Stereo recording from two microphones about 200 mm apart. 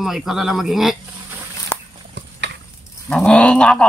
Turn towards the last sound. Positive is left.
turn(degrees=5)  # may be behind; listen again after turning